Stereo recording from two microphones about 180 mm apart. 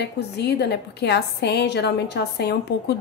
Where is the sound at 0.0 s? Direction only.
65° left (ahead or behind).